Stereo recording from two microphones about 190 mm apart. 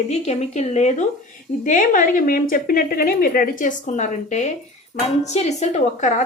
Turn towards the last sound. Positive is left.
turn(degrees=40)  # may be behind; listen again after turning